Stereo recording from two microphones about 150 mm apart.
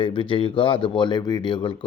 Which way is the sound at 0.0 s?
35° left (ahead or behind).